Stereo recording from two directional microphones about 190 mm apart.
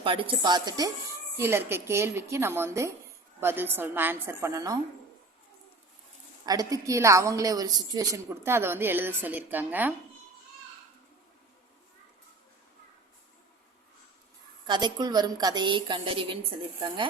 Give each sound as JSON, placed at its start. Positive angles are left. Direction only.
{"t": 0.0, "sound": "a woman's voice", "side_deg": -25}
{"t": 6.4, "sound": "a woman's voice", "side_deg": -20}
{"t": 14.7, "sound": "a woman's voice", "side_deg": -25}